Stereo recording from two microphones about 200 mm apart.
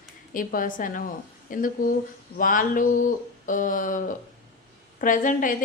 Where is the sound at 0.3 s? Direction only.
45° left (ahead or behind).